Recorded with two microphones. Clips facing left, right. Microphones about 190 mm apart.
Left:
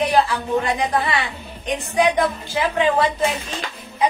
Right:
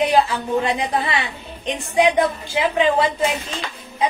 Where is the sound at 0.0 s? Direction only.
20° right (ahead or behind).